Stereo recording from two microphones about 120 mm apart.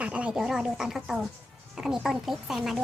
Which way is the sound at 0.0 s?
10° right (ahead or behind).